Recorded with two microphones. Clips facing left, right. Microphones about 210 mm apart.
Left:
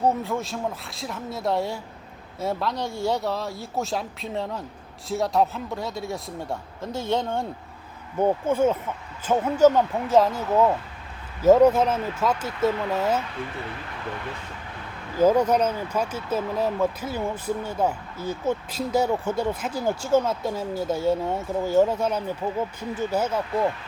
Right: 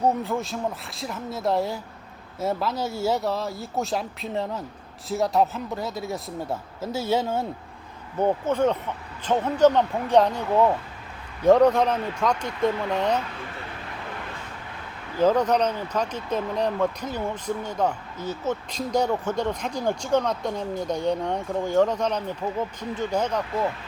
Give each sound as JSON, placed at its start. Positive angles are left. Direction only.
{"t": 0.0, "sound": "a man's voice", "side_deg": 0}
{"t": 8.2, "sound": "a man's voice", "side_deg": 10}
{"t": 15.2, "sound": "speech", "side_deg": 10}